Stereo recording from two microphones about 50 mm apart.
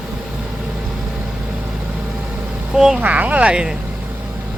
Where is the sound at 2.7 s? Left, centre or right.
Centre.